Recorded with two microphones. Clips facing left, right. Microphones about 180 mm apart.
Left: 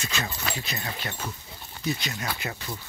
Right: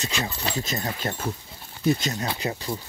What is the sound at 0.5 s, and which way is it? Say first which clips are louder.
Speech: right 5 dB; 40° right (ahead or behind).